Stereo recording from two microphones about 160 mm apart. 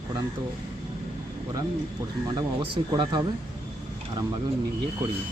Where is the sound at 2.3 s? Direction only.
30° right (ahead or behind).